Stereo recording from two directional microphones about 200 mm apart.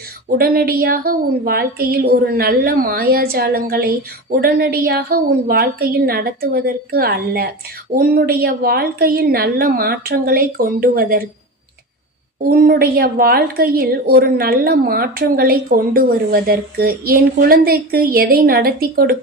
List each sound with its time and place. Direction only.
0.3 s a woman's voice: 50° right (ahead or behind)
12.4 s a woman's voice: 50° right (ahead or behind)